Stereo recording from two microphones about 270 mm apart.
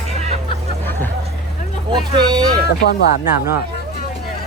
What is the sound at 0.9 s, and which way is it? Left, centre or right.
Hubbub, centre.